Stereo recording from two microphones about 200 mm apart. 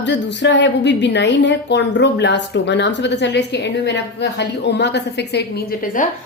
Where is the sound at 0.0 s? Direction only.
60° left (ahead or behind).